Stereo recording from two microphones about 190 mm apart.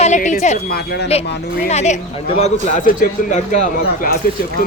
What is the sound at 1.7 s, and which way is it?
Speech, 35° left (ahead or behind).